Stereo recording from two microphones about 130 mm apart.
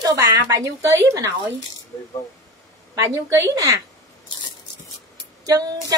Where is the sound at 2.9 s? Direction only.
25° right (ahead or behind).